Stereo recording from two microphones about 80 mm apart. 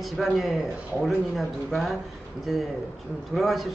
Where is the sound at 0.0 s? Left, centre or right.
Centre.